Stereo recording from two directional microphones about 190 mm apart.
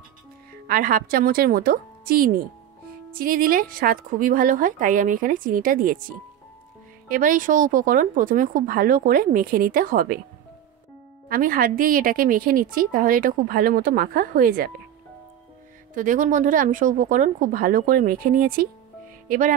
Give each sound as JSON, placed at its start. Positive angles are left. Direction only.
{"t": 0.7, "sound": "a woman's voice", "side_deg": -50}
{"t": 11.2, "sound": "a woman's voice", "side_deg": -45}
{"t": 15.9, "sound": "a woman's voice", "side_deg": -45}